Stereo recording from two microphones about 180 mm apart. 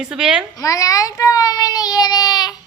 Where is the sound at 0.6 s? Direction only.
20° left (ahead or behind).